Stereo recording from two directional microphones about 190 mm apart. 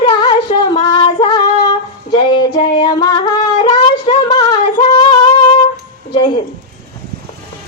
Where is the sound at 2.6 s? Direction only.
20° left (ahead or behind).